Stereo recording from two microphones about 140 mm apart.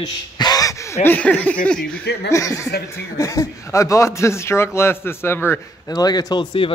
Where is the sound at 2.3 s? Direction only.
20° left (ahead or behind).